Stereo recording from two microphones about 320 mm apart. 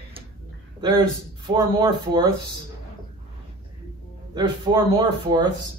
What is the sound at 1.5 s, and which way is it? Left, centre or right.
Speech, centre.